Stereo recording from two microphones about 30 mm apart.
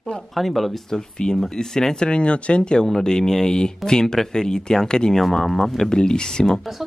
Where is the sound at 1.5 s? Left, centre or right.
Centre.